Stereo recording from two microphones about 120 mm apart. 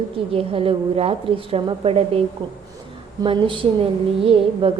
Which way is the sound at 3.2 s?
40° right (ahead or behind).